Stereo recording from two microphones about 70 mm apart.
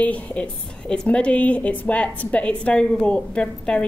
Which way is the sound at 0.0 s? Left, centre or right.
Centre.